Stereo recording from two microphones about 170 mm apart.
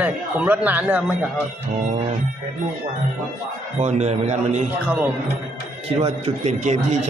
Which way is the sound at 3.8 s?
40° right (ahead or behind).